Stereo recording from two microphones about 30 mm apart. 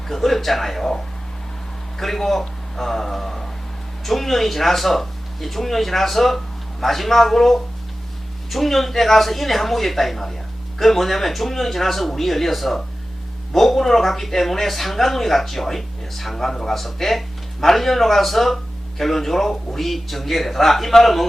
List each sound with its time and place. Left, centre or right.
0.1 s speech: centre